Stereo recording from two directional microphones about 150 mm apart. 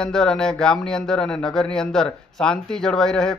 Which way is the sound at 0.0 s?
5° left (ahead or behind).